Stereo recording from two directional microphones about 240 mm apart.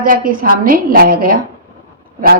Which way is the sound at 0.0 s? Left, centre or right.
Right.